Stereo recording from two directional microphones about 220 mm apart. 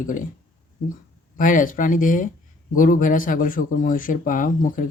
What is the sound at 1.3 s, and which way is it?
Speech, 35° left (ahead or behind).